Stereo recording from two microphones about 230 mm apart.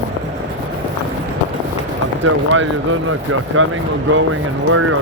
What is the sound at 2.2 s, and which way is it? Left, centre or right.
Speech, right.